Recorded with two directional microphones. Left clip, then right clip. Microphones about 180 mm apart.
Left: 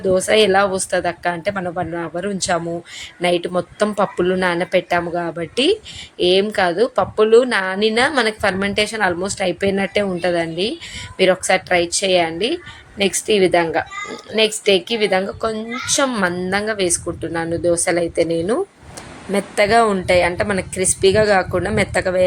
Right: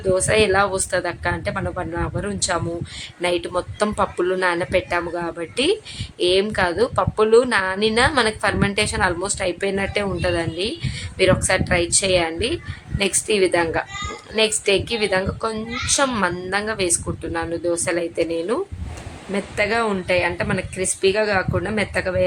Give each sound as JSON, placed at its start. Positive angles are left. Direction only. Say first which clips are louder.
{"t": 0.1, "sound": "a woman's voice", "louder": "left 3 dB", "side_deg": 10}
{"t": 19.3, "sound": "a woman's voice", "louder": "left 6 dB", "side_deg": 25}